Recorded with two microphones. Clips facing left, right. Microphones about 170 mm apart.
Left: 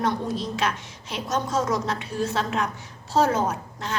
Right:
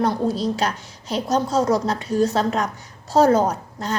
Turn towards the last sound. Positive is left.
turn(degrees=-35)  # may be behind; listen again after turning